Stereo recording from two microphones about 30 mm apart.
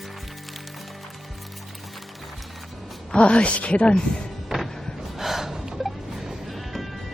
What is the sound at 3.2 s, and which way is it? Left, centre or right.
Speech, left.